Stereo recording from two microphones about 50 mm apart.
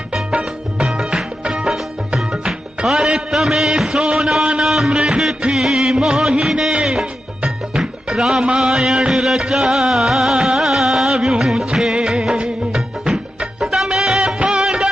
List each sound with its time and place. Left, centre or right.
0.1 s music: centre
4.6 s a sound: centre
4.9 s music: centre
10.4 s music of bollywood: centre